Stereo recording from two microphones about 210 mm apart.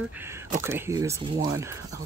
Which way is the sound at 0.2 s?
10° right (ahead or behind).